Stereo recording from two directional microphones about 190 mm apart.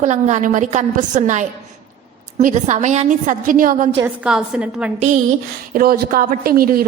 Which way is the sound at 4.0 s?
5° right (ahead or behind).